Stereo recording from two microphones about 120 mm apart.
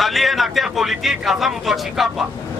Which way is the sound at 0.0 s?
Centre (ahead or behind).